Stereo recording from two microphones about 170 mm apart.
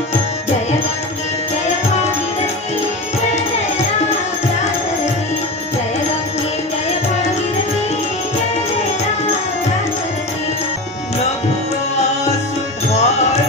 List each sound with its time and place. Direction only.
12.9 s music: 40° left (ahead or behind)